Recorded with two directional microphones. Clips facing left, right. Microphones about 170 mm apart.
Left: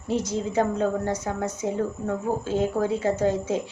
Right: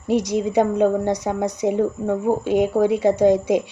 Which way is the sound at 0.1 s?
15° right (ahead or behind).